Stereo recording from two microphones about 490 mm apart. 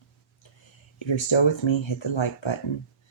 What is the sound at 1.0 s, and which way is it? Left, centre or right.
Speech, left.